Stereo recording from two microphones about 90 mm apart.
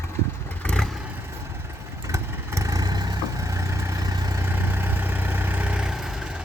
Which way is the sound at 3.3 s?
35° right (ahead or behind).